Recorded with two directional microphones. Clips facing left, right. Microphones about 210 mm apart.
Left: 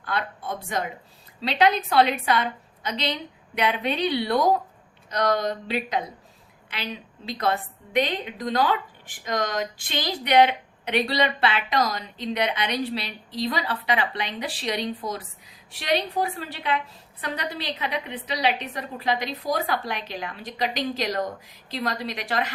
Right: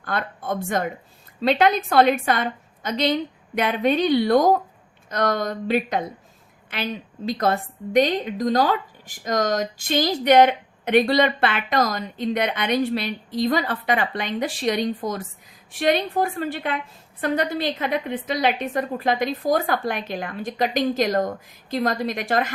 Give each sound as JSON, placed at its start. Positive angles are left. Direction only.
{"t": 0.0, "sound": "a woman's voice", "side_deg": -50}